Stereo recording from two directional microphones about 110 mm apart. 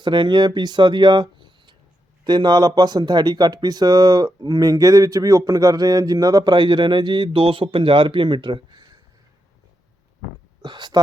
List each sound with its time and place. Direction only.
0.0 s speech: 45° right (ahead or behind)
10.6 s speech: 40° right (ahead or behind)